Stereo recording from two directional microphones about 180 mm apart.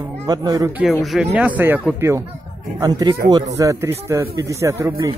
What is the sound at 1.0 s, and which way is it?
Speech, 5° right (ahead or behind).